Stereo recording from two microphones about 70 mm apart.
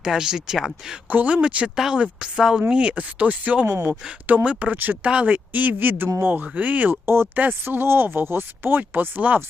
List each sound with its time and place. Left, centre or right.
0.0 s speech: centre
1.1 s speech: centre
7.0 s speech: right